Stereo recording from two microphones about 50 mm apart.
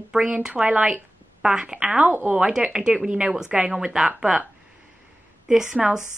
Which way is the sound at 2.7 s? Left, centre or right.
Centre.